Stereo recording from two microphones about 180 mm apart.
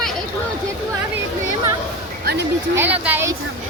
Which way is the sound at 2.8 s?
10° right (ahead or behind).